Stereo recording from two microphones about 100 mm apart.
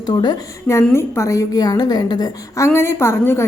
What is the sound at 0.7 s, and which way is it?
A woman's voice, 25° left (ahead or behind).